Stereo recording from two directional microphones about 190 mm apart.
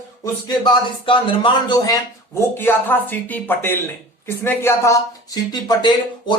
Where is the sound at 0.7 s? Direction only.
25° left (ahead or behind).